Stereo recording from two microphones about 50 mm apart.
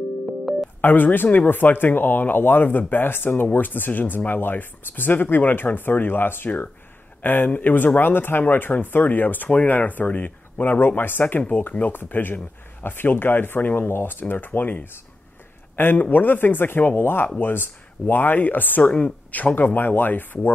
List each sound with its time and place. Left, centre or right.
0.7 s a man's voice: left
11.9 s a man's voice: left